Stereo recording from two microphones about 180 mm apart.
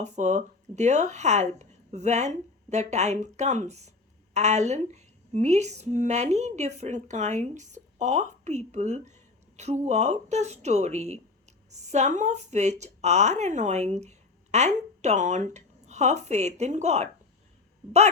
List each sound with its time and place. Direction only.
0.0 s speech: 40° right (ahead or behind)